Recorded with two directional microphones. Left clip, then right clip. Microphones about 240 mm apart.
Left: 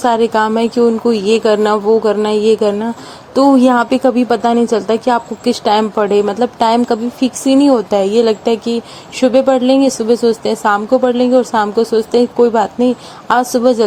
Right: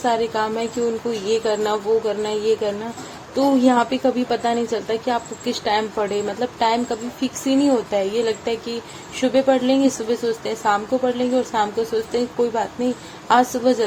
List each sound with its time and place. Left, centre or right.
0.0 s a woman's voice: left